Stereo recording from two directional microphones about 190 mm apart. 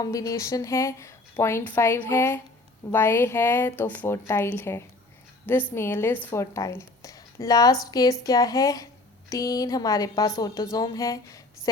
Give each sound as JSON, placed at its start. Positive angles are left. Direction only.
{"t": 0.0, "sound": "a woman's voice", "side_deg": 20}